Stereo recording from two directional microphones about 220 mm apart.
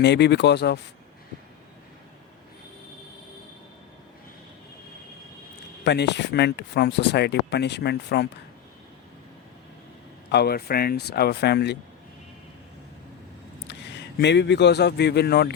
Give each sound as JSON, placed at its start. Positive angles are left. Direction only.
{"t": 0.0, "sound": "speech", "side_deg": 50}
{"t": 5.8, "sound": "speech", "side_deg": 50}
{"t": 10.3, "sound": "speech", "side_deg": 45}
{"t": 13.7, "sound": "speech", "side_deg": 50}